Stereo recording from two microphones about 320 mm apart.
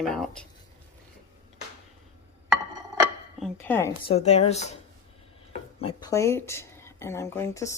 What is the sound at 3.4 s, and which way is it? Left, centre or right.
Speech, centre.